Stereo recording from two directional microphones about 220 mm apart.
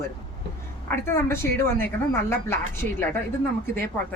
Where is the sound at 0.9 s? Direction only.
10° left (ahead or behind).